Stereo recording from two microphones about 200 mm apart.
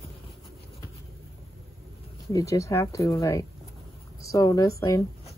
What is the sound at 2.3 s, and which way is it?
Speech, 15° left (ahead or behind).